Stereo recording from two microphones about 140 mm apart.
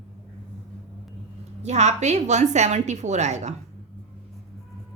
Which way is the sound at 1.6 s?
55° right (ahead or behind).